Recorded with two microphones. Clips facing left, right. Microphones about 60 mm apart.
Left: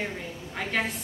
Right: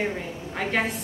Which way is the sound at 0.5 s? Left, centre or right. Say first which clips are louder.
Right 3 dB; centre.